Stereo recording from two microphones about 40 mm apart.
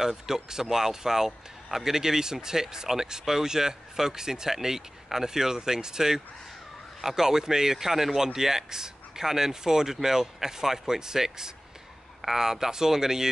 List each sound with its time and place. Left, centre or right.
0.0 s speech: centre